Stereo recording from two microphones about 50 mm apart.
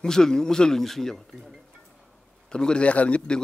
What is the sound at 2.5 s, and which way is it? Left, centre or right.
Speech, centre.